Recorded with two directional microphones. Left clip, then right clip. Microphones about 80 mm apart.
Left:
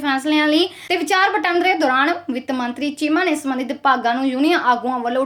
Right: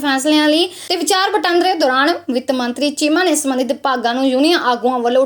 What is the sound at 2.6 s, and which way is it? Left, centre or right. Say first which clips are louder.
Speech: right 5 dB; left.